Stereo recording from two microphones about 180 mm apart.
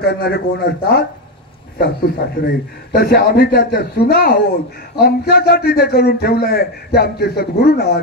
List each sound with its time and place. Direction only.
0.0 s a man's voice: 60° left (ahead or behind)